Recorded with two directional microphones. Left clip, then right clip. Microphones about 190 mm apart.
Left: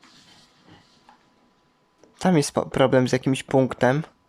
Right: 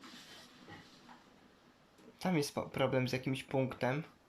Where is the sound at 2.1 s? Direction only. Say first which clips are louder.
Left 14 dB; 55° left (ahead or behind).